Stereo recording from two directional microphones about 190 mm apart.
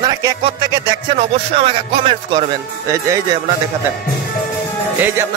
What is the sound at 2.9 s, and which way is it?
Speech, 15° right (ahead or behind).